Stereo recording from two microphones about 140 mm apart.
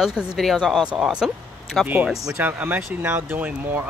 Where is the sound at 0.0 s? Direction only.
5° right (ahead or behind).